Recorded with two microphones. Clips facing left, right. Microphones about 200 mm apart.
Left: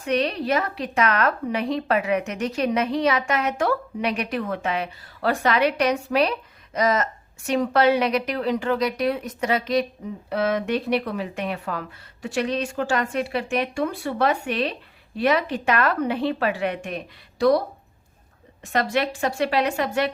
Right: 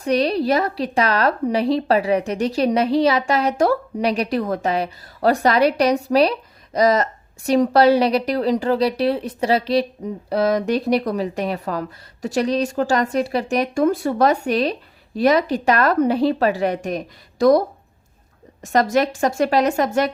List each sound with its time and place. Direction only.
0.0 s a woman's voice: 35° right (ahead or behind)
18.6 s a woman's voice: 45° right (ahead or behind)